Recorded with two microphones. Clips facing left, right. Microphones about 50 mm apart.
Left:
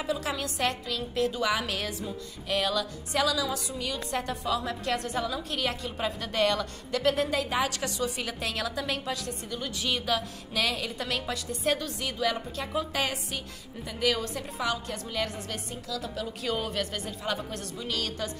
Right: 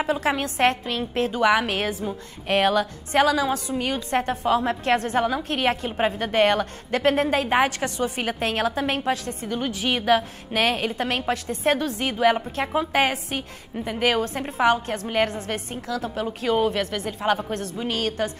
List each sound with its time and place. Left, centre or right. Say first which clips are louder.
0.0 s a woman's voice: right 7 dB; right